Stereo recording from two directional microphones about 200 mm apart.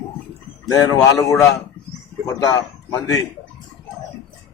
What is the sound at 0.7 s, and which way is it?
Speech, 15° left (ahead or behind).